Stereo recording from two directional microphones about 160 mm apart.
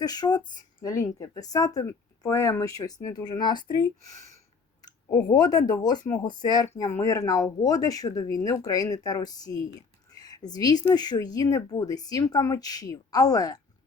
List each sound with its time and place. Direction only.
0.0 s speech: 25° left (ahead or behind)
5.1 s speech: 25° left (ahead or behind)